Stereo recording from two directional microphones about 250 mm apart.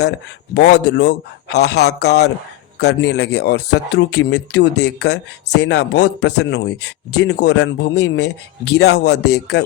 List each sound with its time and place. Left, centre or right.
0.5 s a man's voice: left